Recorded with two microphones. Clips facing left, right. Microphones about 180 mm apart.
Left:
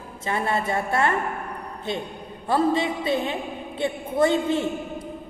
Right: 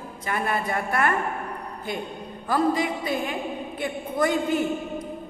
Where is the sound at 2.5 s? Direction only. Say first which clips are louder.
Left 1 dB; 25° left (ahead or behind).